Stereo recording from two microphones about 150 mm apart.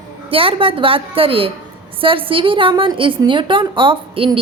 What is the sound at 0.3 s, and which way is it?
A woman's voice, 35° right (ahead or behind).